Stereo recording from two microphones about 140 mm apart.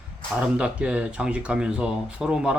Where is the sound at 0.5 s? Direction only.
5° right (ahead or behind).